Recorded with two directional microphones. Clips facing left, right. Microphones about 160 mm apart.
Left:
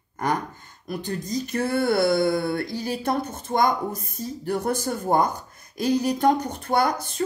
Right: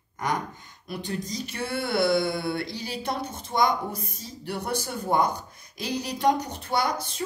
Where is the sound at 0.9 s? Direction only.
45° left (ahead or behind).